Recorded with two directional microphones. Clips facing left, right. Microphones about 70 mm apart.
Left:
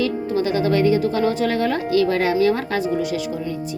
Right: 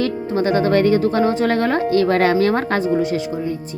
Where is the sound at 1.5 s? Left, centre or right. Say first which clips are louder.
Right 3 dB; right.